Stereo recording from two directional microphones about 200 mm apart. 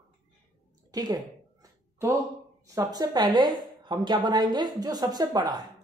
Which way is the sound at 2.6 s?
15° right (ahead or behind).